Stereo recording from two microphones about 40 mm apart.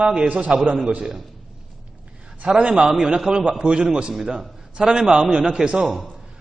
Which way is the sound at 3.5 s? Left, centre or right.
Right.